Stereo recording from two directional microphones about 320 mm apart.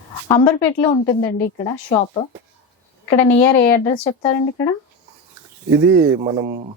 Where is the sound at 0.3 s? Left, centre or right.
Centre.